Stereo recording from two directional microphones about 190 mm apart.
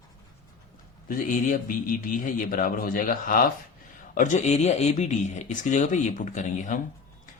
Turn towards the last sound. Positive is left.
turn(degrees=40)  # may be behind; listen again after turning